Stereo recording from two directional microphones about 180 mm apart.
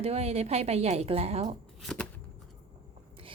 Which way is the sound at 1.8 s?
5° left (ahead or behind).